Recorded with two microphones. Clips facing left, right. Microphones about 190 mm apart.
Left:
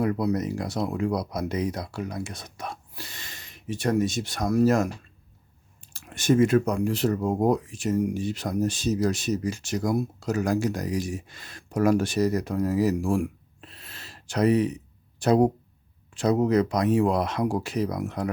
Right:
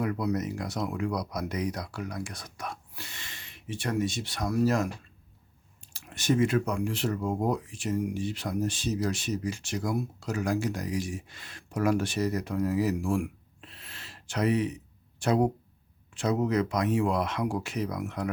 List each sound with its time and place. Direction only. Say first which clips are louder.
0.0 s speech: left 4 dB; 35° left (ahead or behind)
5.9 s speech: left 5 dB; 50° left (ahead or behind)